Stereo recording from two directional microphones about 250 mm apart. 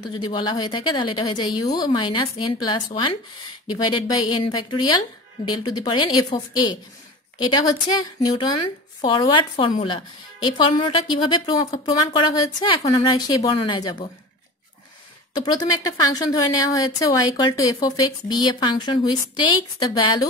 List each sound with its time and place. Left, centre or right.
0.0 s speech: centre
15.3 s speech: centre